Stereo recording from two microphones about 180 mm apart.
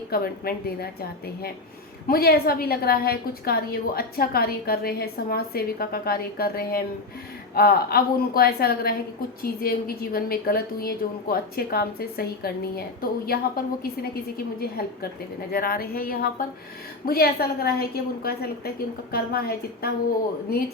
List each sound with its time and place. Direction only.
0.1 s a woman's voice: 55° left (ahead or behind)
2.0 s a woman's voice: 55° left (ahead or behind)